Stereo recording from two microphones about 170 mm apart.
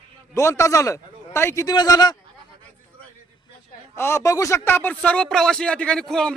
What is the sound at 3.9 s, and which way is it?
Speech, 15° left (ahead or behind).